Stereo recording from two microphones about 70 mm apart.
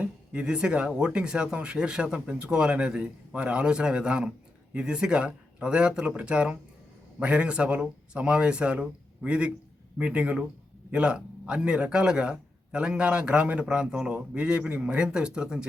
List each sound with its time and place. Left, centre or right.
0.0 s a man's voice: centre